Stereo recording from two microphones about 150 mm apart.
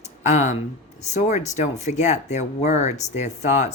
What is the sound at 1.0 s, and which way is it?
Speech, 50° left (ahead or behind).